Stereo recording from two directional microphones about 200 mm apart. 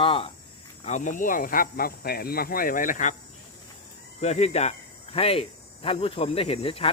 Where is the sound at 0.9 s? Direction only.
40° left (ahead or behind).